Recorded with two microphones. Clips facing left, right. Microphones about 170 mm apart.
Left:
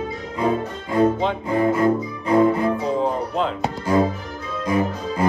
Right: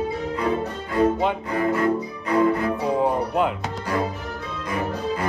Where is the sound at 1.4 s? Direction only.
25° left (ahead or behind).